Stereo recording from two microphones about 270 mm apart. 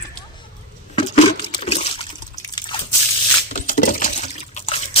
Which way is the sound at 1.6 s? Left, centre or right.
Left.